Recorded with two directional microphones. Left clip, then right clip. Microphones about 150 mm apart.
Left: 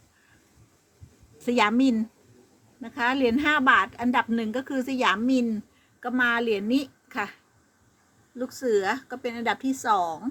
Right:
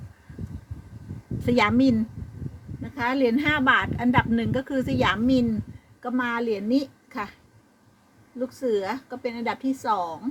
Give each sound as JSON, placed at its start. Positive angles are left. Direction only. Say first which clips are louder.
{"t": 1.5, "sound": "a woman's voice", "louder": "right 1 dB", "side_deg": 20}
{"t": 2.8, "sound": "a woman's voice", "louder": "even", "side_deg": 35}
{"t": 8.4, "sound": "a woman's voice", "louder": "left 1 dB", "side_deg": 30}